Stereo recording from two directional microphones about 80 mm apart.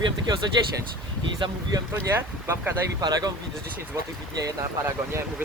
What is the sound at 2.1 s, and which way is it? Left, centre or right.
Speech, right.